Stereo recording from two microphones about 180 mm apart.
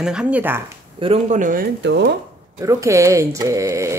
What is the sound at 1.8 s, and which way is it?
Speech, 75° right (ahead or behind).